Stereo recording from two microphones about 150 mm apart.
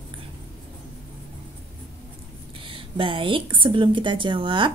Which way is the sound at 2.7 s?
35° right (ahead or behind).